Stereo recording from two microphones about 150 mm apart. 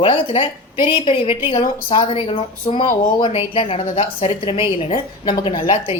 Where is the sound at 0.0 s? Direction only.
35° left (ahead or behind).